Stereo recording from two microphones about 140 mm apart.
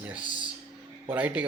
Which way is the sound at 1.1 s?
10° right (ahead or behind).